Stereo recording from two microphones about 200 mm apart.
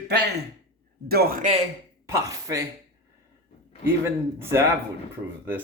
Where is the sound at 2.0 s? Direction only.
15° right (ahead or behind).